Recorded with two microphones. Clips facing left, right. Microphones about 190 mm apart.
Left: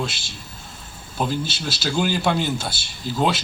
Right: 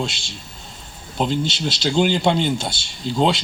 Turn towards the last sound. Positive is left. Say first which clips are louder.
# right 3 dB
turn(degrees=-25)  # may be behind; listen again after turning